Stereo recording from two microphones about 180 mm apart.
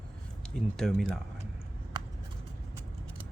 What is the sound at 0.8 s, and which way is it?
Speech, centre (ahead or behind).